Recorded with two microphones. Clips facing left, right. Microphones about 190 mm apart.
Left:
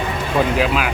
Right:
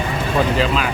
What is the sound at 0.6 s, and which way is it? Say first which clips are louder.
Speech: even; 5° left (ahead or behind).